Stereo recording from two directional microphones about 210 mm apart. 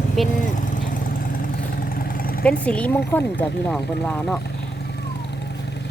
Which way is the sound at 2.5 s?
5° left (ahead or behind).